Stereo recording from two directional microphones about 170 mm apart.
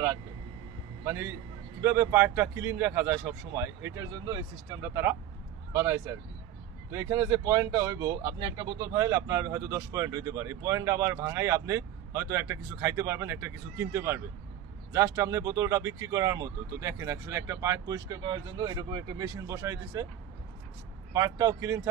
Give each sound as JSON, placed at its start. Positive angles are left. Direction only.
{"t": 1.0, "sound": "a man's voice", "side_deg": -15}
{"t": 21.1, "sound": "speech", "side_deg": -20}